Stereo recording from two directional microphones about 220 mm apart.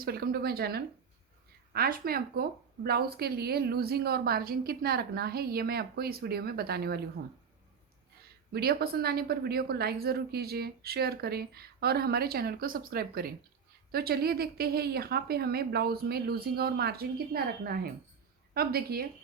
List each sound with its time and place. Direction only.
0.0 s a woman's voice: 45° right (ahead or behind)
8.5 s a woman's voice: 45° right (ahead or behind)